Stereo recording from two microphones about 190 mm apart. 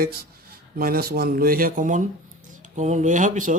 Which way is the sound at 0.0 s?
55° right (ahead or behind).